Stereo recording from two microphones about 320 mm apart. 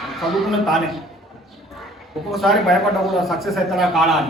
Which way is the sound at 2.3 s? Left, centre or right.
Centre.